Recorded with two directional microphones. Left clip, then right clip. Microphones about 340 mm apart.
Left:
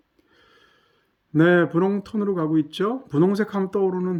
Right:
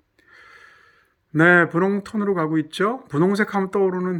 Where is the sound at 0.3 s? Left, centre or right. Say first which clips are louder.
Right 10 dB; centre.